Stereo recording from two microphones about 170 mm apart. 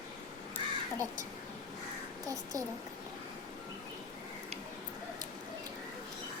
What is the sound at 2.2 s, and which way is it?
Speech, 20° right (ahead or behind).